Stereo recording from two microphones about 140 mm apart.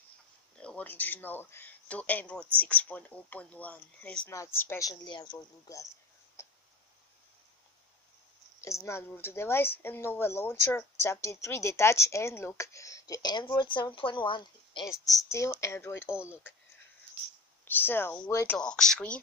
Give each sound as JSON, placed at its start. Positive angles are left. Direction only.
{"t": 0.6, "sound": "speech", "side_deg": 10}
{"t": 4.3, "sound": "speech", "side_deg": 20}
{"t": 6.4, "sound": "tick", "side_deg": 20}
{"t": 8.5, "sound": "speech", "side_deg": 20}
{"t": 14.9, "sound": "speech", "side_deg": 25}
{"t": 16.1, "sound": "speech", "side_deg": -10}
{"t": 17.6, "sound": "speech", "side_deg": 15}
{"t": 18.6, "sound": "speech", "side_deg": 5}